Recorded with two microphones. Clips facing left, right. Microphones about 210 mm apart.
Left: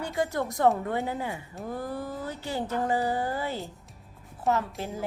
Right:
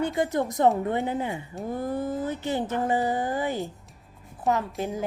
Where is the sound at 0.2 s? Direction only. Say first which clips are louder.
Even; 20° right (ahead or behind).